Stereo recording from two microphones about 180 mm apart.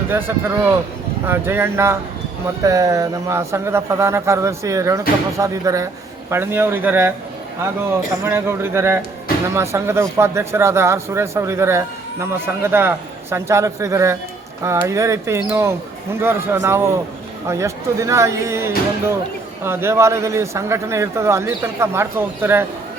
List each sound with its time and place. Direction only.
0.1 s speech: 10° right (ahead or behind)
8.2 s speech: 15° right (ahead or behind)